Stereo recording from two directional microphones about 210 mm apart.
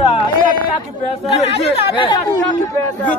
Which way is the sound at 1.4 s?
25° left (ahead or behind).